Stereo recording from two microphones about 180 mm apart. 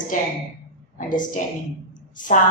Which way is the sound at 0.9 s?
45° left (ahead or behind).